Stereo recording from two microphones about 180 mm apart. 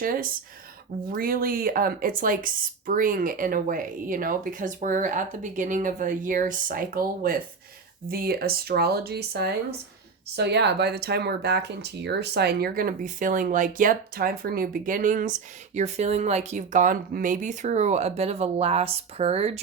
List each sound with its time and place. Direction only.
0.0 s speech: 50° right (ahead or behind); by 19.5 s 35° right (ahead or behind)